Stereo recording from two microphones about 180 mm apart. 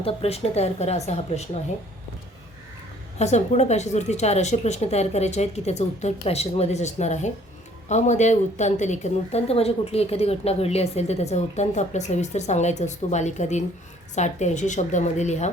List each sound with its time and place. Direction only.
0.0 s speech: 35° left (ahead or behind)
3.2 s speech: 40° left (ahead or behind)